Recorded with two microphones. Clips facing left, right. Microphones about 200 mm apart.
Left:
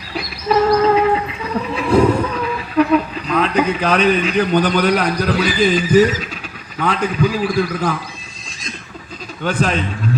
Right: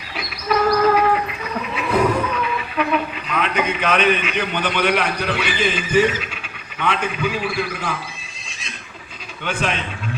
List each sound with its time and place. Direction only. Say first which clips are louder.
0.1 s a sound: left 4 dB; 30° left (ahead or behind)
1.7 s speech: left 5 dB; 30° left (ahead or behind)
9.4 s speech: left 5 dB; 35° left (ahead or behind)